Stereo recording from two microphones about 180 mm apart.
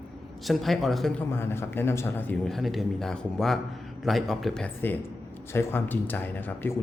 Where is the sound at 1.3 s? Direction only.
15° left (ahead or behind).